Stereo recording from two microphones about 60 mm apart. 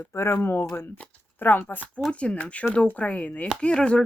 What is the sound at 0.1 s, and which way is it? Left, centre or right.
Speech, left.